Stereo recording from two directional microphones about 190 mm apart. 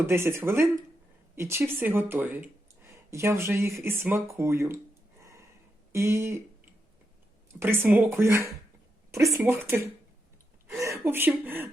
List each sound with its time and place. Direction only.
0.0 s speech: 15° right (ahead or behind)
5.9 s speech: 15° right (ahead or behind)
7.6 s speech: 10° right (ahead or behind)